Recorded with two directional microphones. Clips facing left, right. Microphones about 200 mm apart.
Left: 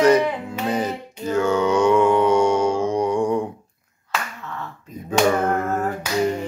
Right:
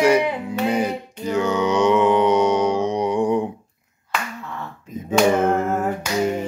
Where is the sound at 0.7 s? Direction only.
10° right (ahead or behind).